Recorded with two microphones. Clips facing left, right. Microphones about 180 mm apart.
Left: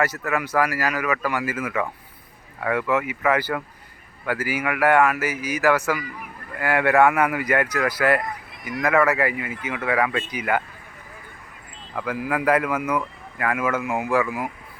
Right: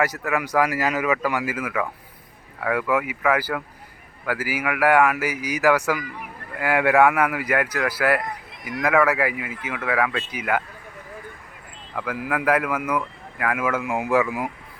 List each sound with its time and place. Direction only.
0.3 s a man's voice: 15° right (ahead or behind)
11.9 s a man's voice: 5° right (ahead or behind)